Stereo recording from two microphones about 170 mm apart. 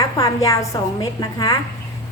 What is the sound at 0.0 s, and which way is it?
A woman's voice, 20° left (ahead or behind).